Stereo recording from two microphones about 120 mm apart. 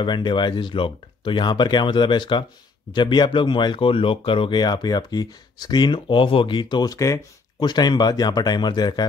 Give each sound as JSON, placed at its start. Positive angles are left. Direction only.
{"t": 0.0, "sound": "speech", "side_deg": 40}